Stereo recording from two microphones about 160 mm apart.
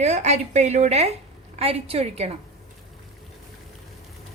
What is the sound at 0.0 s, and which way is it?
A woman's voice, 45° right (ahead or behind).